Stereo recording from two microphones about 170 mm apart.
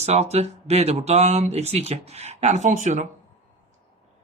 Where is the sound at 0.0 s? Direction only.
40° right (ahead or behind).